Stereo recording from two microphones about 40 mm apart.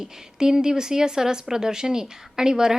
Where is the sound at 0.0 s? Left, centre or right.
Centre.